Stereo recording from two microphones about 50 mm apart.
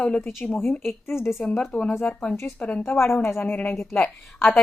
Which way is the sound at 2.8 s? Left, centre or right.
Left.